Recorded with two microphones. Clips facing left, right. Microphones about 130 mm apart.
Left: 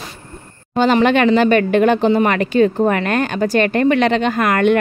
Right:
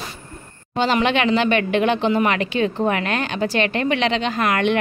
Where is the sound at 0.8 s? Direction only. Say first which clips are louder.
Left 5 dB; 45° left (ahead or behind).